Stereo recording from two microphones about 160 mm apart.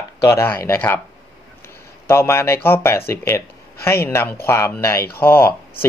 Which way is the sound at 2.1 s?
15° left (ahead or behind).